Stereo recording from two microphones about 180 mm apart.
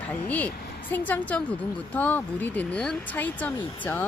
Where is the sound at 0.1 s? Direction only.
10° left (ahead or behind).